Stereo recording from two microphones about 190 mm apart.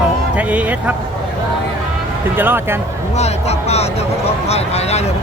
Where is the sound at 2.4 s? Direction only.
10° right (ahead or behind).